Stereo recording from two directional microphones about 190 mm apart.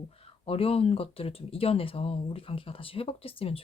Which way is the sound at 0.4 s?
30° left (ahead or behind).